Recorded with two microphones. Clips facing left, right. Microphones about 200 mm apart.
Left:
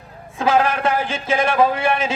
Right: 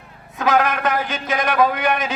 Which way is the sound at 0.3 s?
30° left (ahead or behind).